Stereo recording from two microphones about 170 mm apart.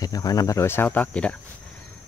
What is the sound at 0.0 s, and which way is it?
Speech, 20° left (ahead or behind).